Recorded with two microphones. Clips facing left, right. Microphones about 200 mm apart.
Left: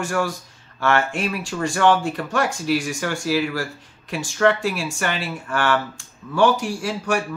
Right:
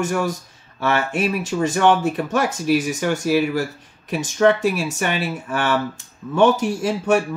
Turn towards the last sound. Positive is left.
turn(degrees=-20)  # may be behind; listen again after turning